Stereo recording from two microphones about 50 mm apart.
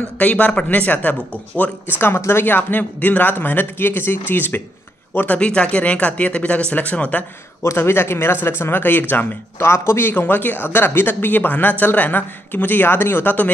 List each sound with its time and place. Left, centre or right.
0.2 s speech: left
2.0 s a man's voice: left
2.4 s a man's voice: left
5.4 s speech: left
7.7 s a man's voice: left
9.6 s a man's voice: left